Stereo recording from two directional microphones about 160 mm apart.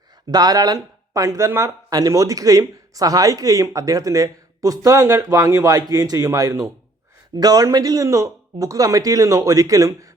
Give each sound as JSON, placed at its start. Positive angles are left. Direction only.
{"t": 0.3, "sound": "speech", "side_deg": -25}